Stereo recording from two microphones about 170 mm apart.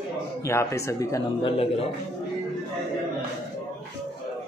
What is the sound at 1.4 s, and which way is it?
Speech, 35° left (ahead or behind).